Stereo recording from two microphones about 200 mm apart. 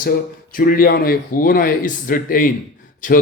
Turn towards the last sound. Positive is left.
turn(degrees=40)  # may be behind; listen again after turning